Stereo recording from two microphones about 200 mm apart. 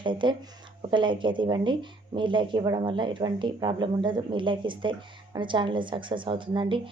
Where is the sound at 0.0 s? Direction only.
25° right (ahead or behind).